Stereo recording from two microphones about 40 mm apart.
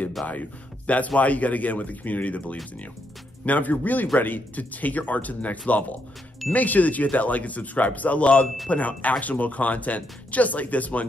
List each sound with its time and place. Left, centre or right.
0.3 s speech: left